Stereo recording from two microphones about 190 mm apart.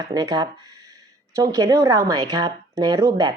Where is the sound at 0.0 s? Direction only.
20° right (ahead or behind).